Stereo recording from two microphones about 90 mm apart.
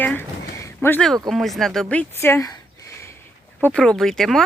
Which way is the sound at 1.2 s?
Centre (ahead or behind).